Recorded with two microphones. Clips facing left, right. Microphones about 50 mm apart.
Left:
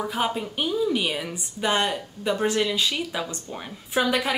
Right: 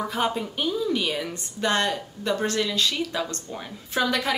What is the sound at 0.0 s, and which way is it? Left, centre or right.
Speech, centre.